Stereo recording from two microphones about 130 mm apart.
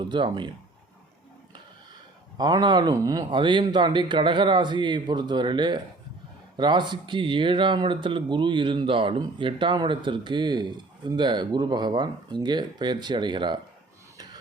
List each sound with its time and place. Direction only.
0.0 s speech: 35° right (ahead or behind)
2.4 s speech: 35° right (ahead or behind)